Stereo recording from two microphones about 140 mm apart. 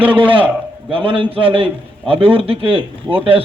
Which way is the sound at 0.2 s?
40° right (ahead or behind).